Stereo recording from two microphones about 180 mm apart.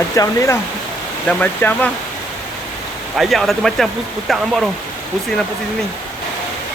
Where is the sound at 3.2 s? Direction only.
Centre (ahead or behind).